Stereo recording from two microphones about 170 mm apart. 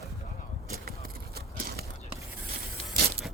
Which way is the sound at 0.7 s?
60° right (ahead or behind).